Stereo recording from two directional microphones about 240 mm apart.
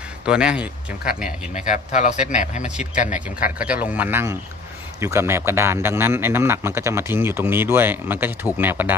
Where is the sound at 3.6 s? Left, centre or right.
Centre.